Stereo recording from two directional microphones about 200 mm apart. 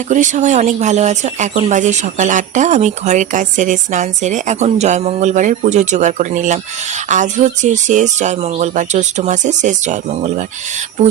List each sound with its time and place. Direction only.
0.1 s speech: 40° right (ahead or behind)